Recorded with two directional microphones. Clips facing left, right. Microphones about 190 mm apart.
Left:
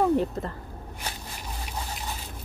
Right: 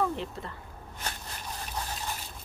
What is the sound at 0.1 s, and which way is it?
Speech, 45° left (ahead or behind).